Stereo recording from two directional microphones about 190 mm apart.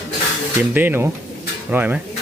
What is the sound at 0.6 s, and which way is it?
Speech, 10° right (ahead or behind).